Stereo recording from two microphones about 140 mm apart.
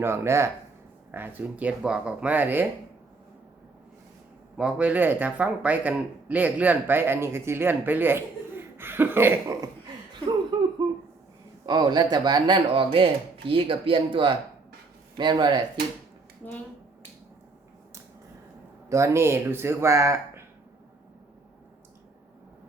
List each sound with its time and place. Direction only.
0.0 s a man's voice: 20° right (ahead or behind)
4.5 s a man's voice: 10° right (ahead or behind)
11.6 s speech: 30° right (ahead or behind)
18.9 s speech: 20° right (ahead or behind)